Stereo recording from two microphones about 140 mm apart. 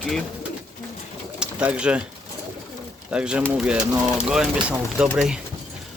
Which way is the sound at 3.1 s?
5° right (ahead or behind).